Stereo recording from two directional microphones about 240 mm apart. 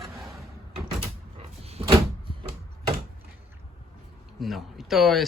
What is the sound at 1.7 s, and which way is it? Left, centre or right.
Door, right.